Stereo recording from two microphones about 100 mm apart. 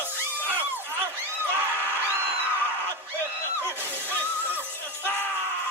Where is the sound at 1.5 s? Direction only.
20° right (ahead or behind).